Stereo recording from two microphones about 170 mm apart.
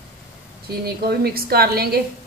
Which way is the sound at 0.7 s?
65° right (ahead or behind).